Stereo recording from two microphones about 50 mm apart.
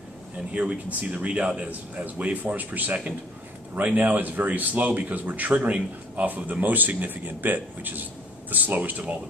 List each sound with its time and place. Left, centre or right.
0.6 s a man's voice: right